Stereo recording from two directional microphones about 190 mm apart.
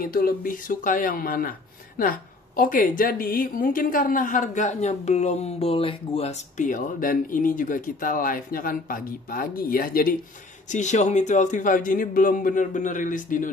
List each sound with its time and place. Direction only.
0.0 s speech: 50° left (ahead or behind)
10.7 s speech: 40° left (ahead or behind)